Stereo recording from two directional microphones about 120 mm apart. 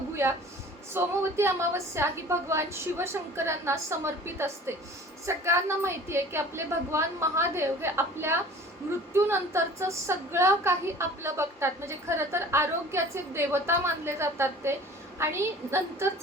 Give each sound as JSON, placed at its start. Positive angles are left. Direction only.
{"t": 0.9, "sound": "a woman's voice", "side_deg": -20}